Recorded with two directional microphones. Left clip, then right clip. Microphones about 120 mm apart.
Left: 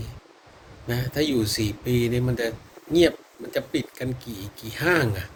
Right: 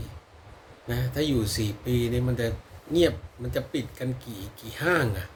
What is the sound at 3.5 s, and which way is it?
Speech, 20° right (ahead or behind).